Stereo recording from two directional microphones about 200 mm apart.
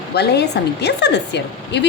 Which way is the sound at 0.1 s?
55° left (ahead or behind).